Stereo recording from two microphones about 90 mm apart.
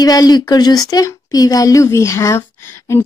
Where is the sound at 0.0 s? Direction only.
45° left (ahead or behind).